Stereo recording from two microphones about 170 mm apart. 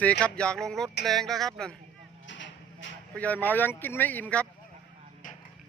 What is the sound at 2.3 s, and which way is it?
Vehicle, 90° left.